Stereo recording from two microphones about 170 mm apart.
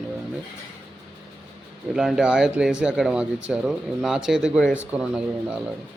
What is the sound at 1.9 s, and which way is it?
Speech, 5° right (ahead or behind).